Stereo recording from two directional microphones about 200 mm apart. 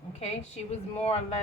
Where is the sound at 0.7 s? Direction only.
30° left (ahead or behind).